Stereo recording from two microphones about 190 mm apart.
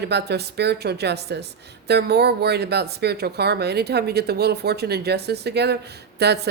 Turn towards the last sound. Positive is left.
turn(degrees=-60)  # may be behind; listen again after turning